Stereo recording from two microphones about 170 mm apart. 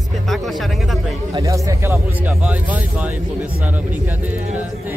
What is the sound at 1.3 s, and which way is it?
Speech, 20° right (ahead or behind).